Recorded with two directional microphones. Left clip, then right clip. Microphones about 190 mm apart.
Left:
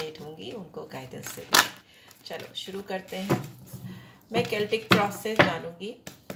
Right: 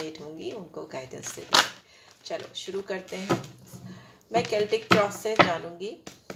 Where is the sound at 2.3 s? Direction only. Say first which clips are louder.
Right 2 dB; 30° right (ahead or behind).